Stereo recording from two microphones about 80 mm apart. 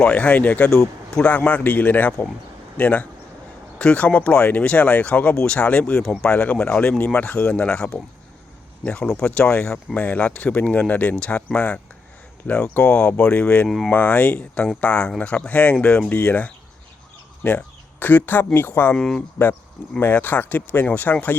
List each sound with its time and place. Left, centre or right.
0.0 s speech: centre
13.7 s speech: centre
13.9 s speech: centre
18.9 s speech: centre
20.0 s speech: left